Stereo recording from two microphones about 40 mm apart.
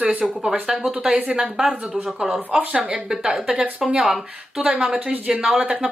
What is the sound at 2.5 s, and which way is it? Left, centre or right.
Speech, right.